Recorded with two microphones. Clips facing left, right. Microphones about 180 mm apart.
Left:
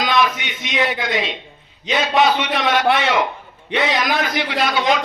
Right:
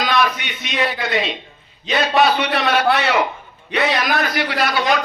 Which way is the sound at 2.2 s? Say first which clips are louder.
Even; 20° left (ahead or behind).